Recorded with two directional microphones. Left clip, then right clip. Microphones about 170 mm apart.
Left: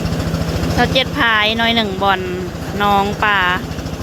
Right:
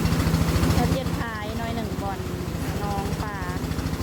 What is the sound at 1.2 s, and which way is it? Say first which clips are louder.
Speech: left 17 dB; 30° left (ahead or behind).